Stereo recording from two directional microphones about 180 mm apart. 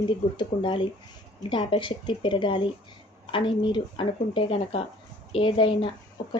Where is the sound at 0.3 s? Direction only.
25° left (ahead or behind).